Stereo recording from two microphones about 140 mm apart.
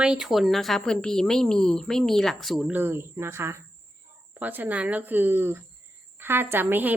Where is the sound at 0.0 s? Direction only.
5° right (ahead or behind).